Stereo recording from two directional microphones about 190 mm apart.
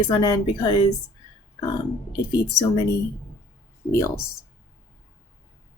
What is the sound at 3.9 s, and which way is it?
Speech, 15° left (ahead or behind).